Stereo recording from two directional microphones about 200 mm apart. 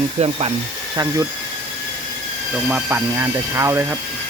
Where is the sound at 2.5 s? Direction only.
10° right (ahead or behind).